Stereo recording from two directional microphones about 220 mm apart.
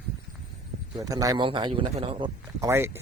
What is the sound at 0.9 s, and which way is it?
A man's voice, 15° right (ahead or behind).